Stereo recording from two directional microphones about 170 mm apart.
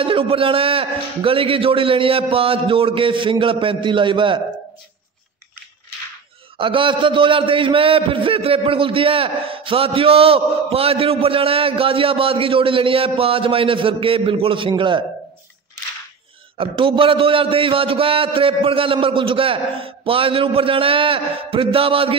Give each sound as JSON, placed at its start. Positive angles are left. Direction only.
{"t": 0.0, "sound": "a man's voice", "side_deg": -30}
{"t": 6.6, "sound": "a man's voice", "side_deg": -30}
{"t": 16.5, "sound": "a man's voice", "side_deg": -30}